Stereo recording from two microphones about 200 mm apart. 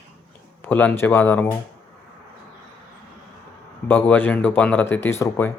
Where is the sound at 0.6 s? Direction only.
10° left (ahead or behind).